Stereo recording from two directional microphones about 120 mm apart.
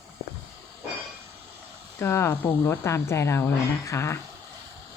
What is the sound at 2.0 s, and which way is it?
Speech, 20° left (ahead or behind).